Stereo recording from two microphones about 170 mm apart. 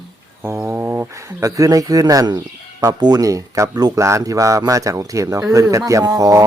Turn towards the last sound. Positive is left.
turn(degrees=-20)  # may be behind; listen again after turning